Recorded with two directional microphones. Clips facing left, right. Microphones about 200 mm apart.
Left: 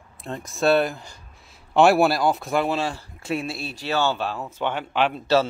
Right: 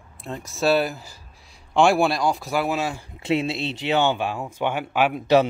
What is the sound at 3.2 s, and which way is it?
Speech, 20° right (ahead or behind).